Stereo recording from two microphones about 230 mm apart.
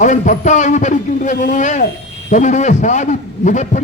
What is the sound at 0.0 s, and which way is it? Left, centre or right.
A man's voice, left.